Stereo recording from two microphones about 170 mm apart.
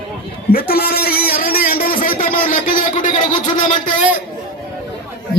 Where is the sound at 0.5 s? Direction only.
60° left (ahead or behind).